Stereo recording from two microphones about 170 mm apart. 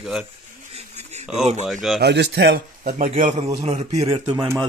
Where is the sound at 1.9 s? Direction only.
85° right.